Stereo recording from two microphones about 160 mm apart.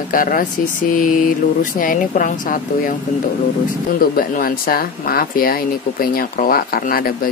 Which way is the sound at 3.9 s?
60° left (ahead or behind).